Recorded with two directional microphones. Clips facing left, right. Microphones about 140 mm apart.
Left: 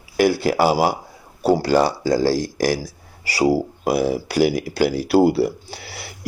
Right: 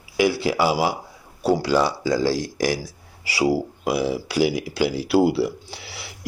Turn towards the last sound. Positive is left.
turn(degrees=50)  # may be behind; listen again after turning